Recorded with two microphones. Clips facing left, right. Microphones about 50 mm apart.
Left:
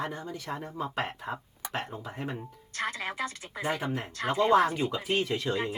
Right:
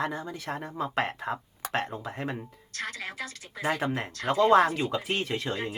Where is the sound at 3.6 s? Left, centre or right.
Right.